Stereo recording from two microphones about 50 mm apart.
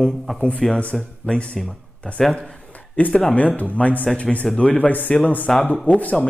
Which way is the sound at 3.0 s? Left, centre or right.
Left.